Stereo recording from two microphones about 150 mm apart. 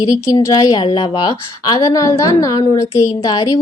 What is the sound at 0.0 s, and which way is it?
Speech, 25° left (ahead or behind).